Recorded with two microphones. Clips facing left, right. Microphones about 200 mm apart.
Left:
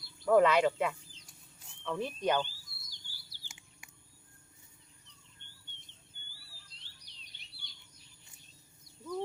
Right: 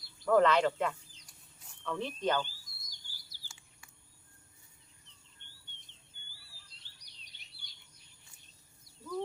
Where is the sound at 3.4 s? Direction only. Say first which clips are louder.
Left 2 dB; 15° left (ahead or behind).